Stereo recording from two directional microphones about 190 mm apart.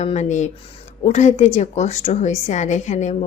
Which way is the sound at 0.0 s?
35° left (ahead or behind).